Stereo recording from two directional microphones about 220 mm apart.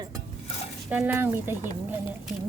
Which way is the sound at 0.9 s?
5° right (ahead or behind).